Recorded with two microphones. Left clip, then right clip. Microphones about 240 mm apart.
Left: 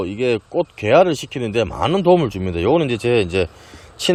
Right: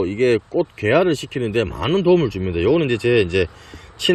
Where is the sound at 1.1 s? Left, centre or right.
Left.